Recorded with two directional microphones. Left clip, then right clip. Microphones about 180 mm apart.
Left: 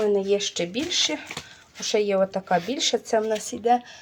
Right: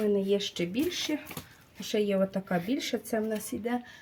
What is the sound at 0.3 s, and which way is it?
Speech, 20° right (ahead or behind).